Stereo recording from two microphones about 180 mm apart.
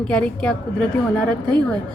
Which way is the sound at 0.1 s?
5° left (ahead or behind).